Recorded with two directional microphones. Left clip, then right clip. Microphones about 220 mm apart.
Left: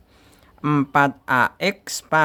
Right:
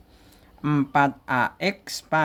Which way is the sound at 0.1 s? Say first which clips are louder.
Left 3 dB; 25° left (ahead or behind).